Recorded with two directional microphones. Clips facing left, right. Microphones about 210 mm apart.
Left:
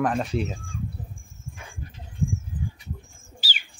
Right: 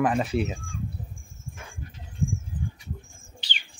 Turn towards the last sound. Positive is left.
turn(degrees=5)  # may be behind; listen again after turning